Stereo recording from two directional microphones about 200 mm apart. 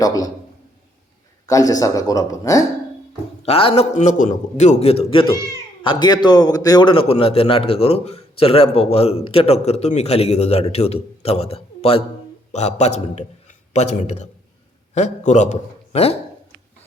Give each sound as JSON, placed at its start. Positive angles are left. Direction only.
{"t": 0.0, "sound": "a man's voice", "side_deg": 20}
{"t": 1.5, "sound": "a man's voice", "side_deg": 15}
{"t": 3.4, "sound": "a man's voice", "side_deg": 30}